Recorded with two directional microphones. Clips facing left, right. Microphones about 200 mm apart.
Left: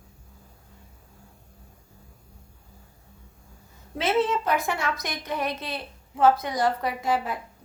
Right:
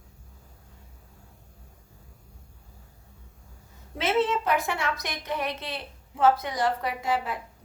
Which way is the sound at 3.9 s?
35° left (ahead or behind).